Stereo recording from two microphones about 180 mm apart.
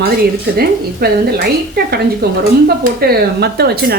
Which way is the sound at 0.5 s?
60° right (ahead or behind).